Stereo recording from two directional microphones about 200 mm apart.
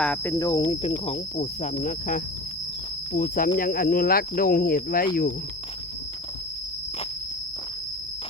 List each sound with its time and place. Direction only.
0.0 s cricket: 10° left (ahead or behind)
0.6 s speech: 30° left (ahead or behind); by 5.0 s 45° left (ahead or behind)